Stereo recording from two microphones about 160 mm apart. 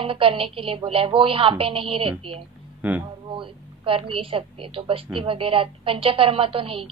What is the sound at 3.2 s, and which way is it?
A woman's voice, 35° right (ahead or behind).